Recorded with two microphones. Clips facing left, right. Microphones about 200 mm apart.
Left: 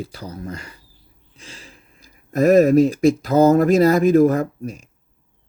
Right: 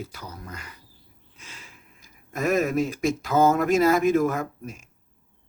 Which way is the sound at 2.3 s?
35° left (ahead or behind).